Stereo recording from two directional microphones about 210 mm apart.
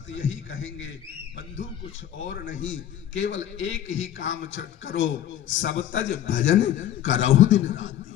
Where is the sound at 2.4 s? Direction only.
65° left (ahead or behind).